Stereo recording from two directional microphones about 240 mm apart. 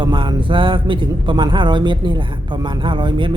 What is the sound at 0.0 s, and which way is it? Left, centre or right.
A man's voice, centre.